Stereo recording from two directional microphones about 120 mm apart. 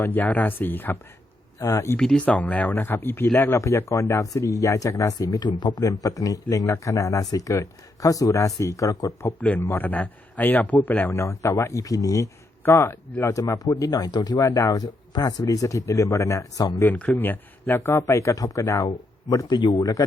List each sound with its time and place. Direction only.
0.0 s a man's voice: 15° left (ahead or behind)
2.0 s a man's voice: 5° left (ahead or behind); by 9.3 s 30° left (ahead or behind)
9.4 s a man's voice: 10° left (ahead or behind)
11.1 s speech: 25° left (ahead or behind)
16.8 s speech: 15° left (ahead or behind); by 20.1 s 35° left (ahead or behind)